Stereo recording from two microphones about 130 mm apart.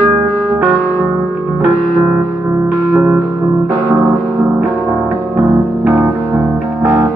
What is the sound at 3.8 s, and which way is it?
Gong, 15° right (ahead or behind).